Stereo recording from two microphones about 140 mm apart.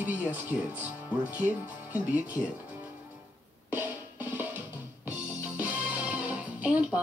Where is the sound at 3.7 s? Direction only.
10° right (ahead or behind).